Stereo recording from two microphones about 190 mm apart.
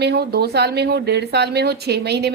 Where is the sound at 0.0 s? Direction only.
60° right (ahead or behind).